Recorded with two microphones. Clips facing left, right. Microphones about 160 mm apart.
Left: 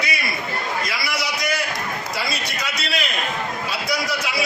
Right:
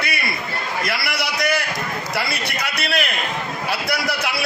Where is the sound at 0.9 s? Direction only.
65° right (ahead or behind).